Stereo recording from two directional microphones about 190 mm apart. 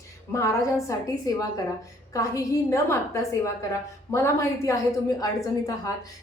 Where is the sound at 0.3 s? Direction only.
15° left (ahead or behind).